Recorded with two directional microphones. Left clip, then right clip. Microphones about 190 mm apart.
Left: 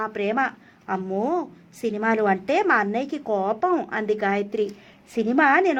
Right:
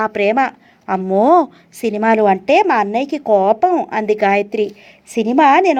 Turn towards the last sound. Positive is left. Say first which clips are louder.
# right 8 dB
turn(degrees=-25)  # may be behind; listen again after turning